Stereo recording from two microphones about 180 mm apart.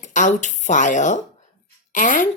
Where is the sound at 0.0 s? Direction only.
45° left (ahead or behind).